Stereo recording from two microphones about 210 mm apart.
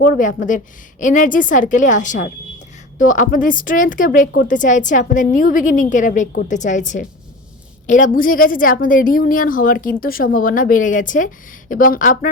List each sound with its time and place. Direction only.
0.0 s a woman's voice: 40° left (ahead or behind)